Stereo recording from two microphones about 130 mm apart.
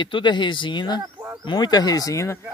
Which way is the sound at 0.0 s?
35° left (ahead or behind).